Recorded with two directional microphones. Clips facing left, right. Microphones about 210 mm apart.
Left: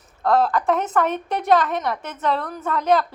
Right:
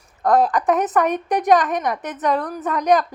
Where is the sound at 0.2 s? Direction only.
15° right (ahead or behind).